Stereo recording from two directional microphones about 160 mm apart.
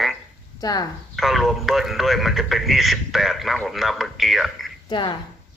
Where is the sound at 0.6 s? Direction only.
25° left (ahead or behind).